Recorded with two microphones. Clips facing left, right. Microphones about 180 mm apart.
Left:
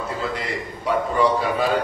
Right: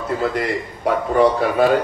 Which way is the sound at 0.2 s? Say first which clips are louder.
Right 6 dB; 55° right (ahead or behind).